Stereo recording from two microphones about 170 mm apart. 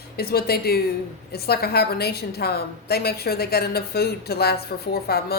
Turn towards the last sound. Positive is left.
turn(degrees=65)  # may be behind; listen again after turning